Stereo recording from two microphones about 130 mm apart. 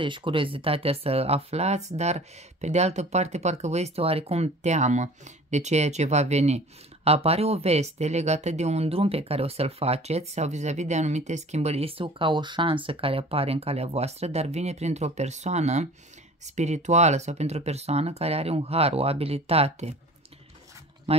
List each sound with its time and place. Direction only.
0.0 s speech: 40° right (ahead or behind)
21.1 s speech: 50° right (ahead or behind)